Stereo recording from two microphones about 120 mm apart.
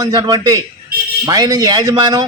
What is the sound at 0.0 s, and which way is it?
A man's voice, 40° right (ahead or behind).